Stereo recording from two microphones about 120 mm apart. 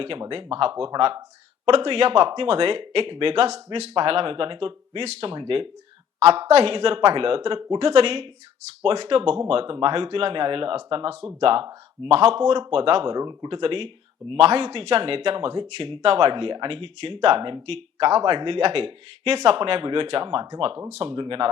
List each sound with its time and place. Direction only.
0.0 s speech: 45° right (ahead or behind)
6.1 s a woman's voice: 60° right (ahead or behind)
13.1 s speech: 35° right (ahead or behind)